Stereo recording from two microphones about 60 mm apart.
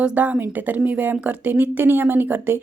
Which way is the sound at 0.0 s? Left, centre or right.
Right.